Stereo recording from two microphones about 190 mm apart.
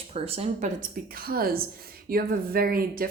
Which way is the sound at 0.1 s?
30° right (ahead or behind).